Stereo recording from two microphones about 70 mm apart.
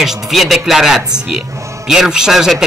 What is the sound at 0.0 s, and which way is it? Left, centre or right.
A man's voice, centre.